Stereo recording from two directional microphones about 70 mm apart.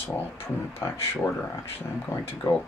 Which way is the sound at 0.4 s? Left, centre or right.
Left.